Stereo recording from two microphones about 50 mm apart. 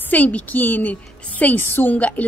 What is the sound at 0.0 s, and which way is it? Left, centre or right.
A woman's voice, left.